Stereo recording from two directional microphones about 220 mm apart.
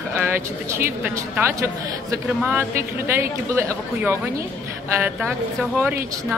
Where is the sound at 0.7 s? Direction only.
10° right (ahead or behind).